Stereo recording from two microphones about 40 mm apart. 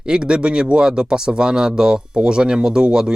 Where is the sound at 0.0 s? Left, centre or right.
Right.